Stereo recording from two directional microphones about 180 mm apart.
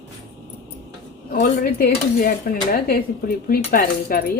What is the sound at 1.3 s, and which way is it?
Speech, 50° left (ahead or behind).